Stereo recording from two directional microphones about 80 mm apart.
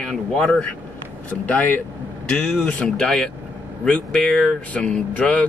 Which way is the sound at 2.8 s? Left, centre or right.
Centre.